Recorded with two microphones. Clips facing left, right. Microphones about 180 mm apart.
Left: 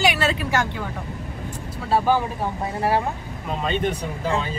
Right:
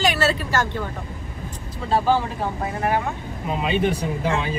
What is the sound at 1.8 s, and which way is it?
Speech, 5° left (ahead or behind).